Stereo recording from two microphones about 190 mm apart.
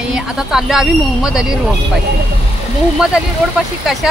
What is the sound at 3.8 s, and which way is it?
Speech, centre (ahead or behind).